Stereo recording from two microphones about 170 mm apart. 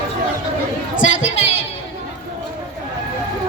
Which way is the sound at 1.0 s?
45° left (ahead or behind).